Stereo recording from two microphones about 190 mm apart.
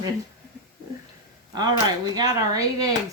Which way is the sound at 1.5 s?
20° right (ahead or behind).